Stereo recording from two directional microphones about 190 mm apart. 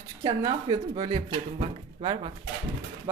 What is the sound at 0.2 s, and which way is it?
Speech, 20° right (ahead or behind).